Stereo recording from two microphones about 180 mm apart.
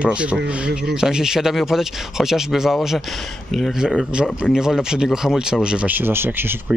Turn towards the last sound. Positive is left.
turn(degrees=-10)  # may be behind; listen again after turning